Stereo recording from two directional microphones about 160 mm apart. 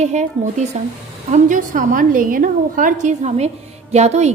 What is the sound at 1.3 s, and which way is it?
A woman's voice, 55° right (ahead or behind).